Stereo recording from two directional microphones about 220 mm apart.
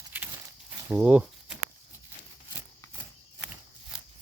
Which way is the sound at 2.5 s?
15° left (ahead or behind).